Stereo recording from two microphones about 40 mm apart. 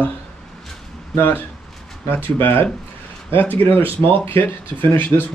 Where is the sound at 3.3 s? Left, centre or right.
Left.